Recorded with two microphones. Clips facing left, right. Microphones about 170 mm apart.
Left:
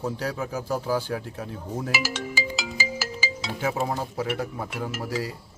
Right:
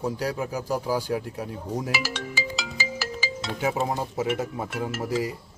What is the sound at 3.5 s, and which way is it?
Speech, 20° right (ahead or behind).